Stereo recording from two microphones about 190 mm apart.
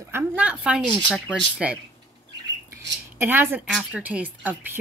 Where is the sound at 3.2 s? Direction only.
10° right (ahead or behind).